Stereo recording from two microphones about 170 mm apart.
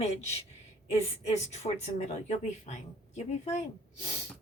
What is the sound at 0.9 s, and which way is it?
A woman's voice, 40° left (ahead or behind).